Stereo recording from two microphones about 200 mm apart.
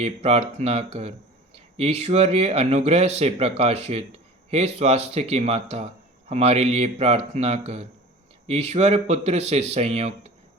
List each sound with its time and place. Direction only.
0.0 s speech: 30° right (ahead or behind)